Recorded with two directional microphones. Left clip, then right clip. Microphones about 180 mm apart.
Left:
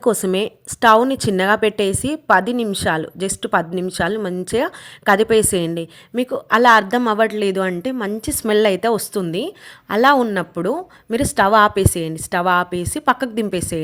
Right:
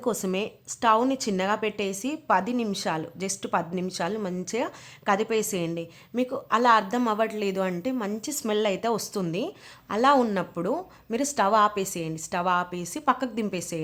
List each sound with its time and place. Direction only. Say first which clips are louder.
0.0 s a woman's voice: left 10 dB; 30° left (ahead or behind)